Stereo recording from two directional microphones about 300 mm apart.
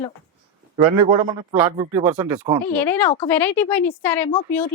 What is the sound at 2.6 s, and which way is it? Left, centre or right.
Speech, centre.